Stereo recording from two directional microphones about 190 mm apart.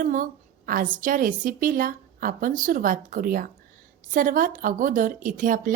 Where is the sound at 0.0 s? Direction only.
45° right (ahead or behind).